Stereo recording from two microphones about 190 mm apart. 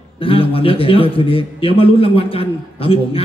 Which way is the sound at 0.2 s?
30° left (ahead or behind).